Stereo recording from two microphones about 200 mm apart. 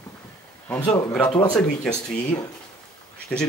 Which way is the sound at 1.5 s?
5° left (ahead or behind).